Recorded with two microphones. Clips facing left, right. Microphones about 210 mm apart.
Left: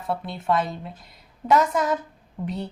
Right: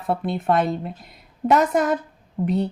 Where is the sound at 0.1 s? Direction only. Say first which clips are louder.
Right 4 dB; 55° right (ahead or behind).